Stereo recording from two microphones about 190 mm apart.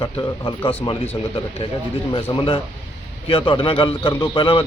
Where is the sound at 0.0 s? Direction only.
25° left (ahead or behind).